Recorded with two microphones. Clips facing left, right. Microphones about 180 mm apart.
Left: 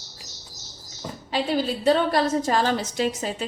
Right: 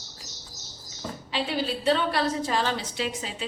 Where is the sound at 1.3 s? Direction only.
45° left (ahead or behind).